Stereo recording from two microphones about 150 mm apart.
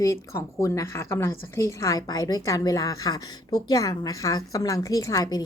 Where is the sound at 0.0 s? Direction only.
20° left (ahead or behind).